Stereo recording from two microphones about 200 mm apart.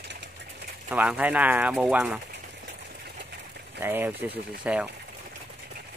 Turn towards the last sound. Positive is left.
turn(degrees=-5)  # may be behind; listen again after turning